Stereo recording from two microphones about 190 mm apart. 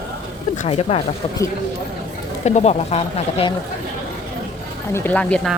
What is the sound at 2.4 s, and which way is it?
Speech, 35° left (ahead or behind).